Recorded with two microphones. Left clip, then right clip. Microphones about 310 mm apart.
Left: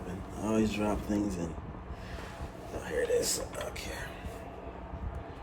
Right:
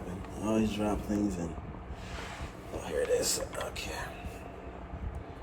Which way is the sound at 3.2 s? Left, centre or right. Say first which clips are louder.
Even; centre.